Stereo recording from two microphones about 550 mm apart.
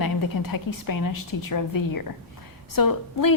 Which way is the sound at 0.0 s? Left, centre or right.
Left.